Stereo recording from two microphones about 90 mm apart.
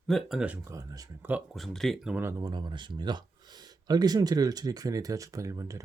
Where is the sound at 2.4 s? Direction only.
55° right (ahead or behind).